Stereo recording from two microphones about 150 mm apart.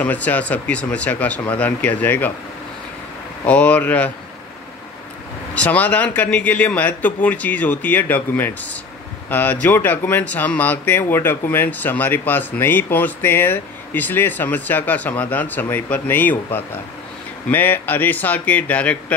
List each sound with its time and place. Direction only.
0.0 s speech: 10° left (ahead or behind)
3.4 s speech: 10° left (ahead or behind)
5.5 s speech: 10° left (ahead or behind)